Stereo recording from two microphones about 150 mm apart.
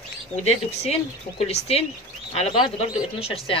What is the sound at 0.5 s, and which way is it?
Speech, 45° left (ahead or behind).